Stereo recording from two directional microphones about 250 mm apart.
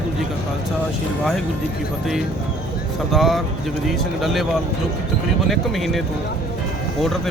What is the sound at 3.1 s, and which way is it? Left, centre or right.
Speech, centre.